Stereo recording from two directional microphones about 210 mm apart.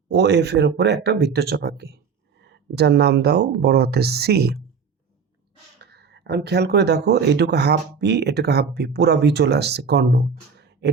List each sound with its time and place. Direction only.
0.1 s speech: 55° right (ahead or behind)
5.8 s speech: 50° right (ahead or behind)